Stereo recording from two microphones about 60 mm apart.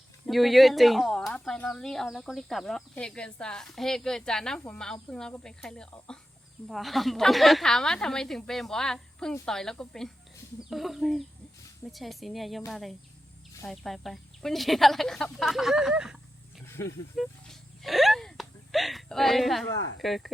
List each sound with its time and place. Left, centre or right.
0.3 s speech: centre
3.0 s a woman's voice: centre
6.7 s a woman's voice: centre
10.6 s speech: centre
16.6 s snake: left
17.2 s a sound: centre
20.0 s speech: centre